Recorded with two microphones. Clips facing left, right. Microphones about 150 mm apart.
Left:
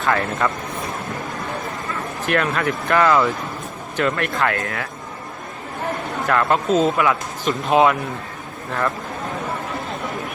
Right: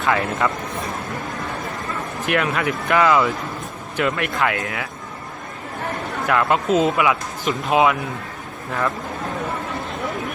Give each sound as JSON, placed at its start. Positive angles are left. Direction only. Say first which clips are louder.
{"t": 0.0, "sound": "speech", "louder": "even", "side_deg": 0}
{"t": 2.4, "sound": "speech", "louder": "even", "side_deg": 0}
{"t": 6.2, "sound": "speech", "louder": "even", "side_deg": -5}
{"t": 6.7, "sound": "speech", "louder": "even", "side_deg": -15}
{"t": 6.9, "sound": "speech", "louder": "even", "side_deg": -5}